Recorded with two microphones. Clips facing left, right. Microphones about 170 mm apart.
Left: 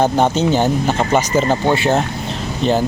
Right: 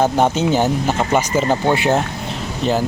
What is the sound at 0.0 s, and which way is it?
Speech, 5° right (ahead or behind).